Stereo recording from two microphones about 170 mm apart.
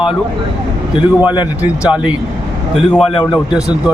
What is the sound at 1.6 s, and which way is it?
A man's voice, 5° right (ahead or behind).